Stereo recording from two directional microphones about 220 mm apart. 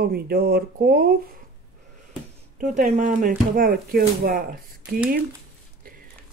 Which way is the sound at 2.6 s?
35° right (ahead or behind).